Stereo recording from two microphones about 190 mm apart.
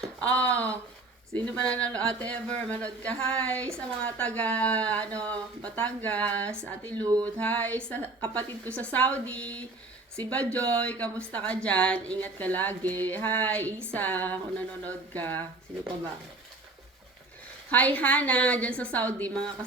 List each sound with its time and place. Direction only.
0.2 s speech: 5° left (ahead or behind)
7.0 s a sound: 20° right (ahead or behind)
7.3 s speech: 5° left (ahead or behind)
17.7 s speech: 10° left (ahead or behind)